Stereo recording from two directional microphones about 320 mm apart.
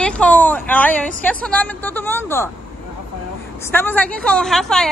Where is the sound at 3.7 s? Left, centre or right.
Centre.